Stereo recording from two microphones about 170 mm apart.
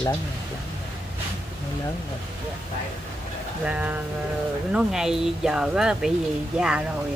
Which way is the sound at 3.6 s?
10° right (ahead or behind).